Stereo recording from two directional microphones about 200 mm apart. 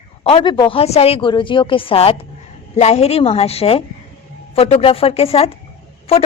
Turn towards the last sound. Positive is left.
turn(degrees=30)  # may be behind; listen again after turning